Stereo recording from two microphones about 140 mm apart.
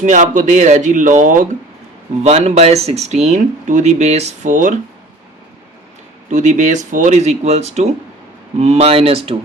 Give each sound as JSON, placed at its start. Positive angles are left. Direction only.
{"t": 0.0, "sound": "speech", "side_deg": -60}
{"t": 2.2, "sound": "speech", "side_deg": -50}
{"t": 6.3, "sound": "speech", "side_deg": -55}